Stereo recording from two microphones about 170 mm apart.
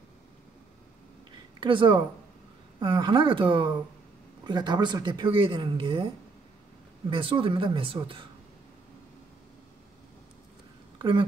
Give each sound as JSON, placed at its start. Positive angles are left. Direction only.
{"t": 1.6, "sound": "speech", "side_deg": -30}
{"t": 7.1, "sound": "a woman's voice", "side_deg": -30}
{"t": 11.0, "sound": "speech", "side_deg": -30}